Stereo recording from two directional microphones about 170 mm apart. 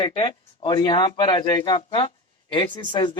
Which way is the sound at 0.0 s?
30° left (ahead or behind).